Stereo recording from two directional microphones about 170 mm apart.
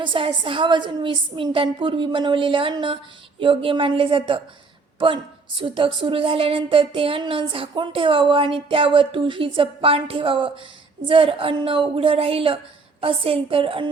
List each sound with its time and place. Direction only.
0.0 s a woman's voice: 30° right (ahead or behind)